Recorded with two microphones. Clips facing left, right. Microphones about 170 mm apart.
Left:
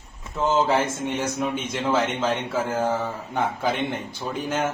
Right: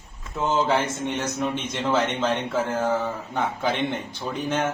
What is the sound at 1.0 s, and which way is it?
A man's voice, 10° left (ahead or behind).